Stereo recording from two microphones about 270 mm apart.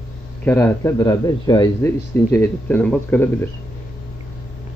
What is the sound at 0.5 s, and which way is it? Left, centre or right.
Speech, centre.